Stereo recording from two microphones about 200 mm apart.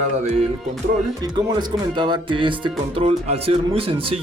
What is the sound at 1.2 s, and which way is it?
Speech, 20° right (ahead or behind).